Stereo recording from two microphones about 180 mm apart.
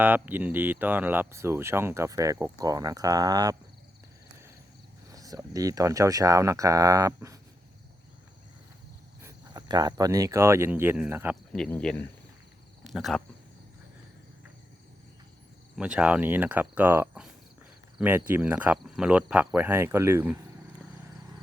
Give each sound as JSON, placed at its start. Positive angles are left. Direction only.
{"t": 0.0, "sound": "speech", "side_deg": -10}
{"t": 5.1, "sound": "speech", "side_deg": -20}
{"t": 9.2, "sound": "speech", "side_deg": -20}
{"t": 11.5, "sound": "speech", "side_deg": 5}
{"t": 15.7, "sound": "speech", "side_deg": -5}